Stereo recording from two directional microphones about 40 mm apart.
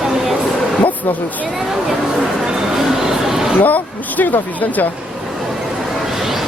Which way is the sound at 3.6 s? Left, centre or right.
Left.